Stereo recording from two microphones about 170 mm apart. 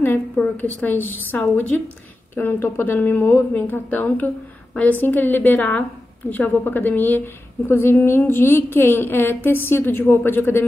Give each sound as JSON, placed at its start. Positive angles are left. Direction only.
{"t": 0.0, "sound": "a woman's voice", "side_deg": 10}